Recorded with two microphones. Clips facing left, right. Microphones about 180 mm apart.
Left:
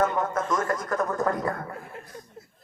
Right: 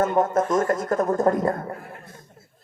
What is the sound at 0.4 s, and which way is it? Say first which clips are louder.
Speech: right 5 dB; 25° right (ahead or behind).